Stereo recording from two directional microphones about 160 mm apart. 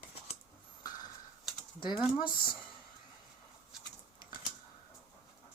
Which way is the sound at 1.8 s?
30° left (ahead or behind).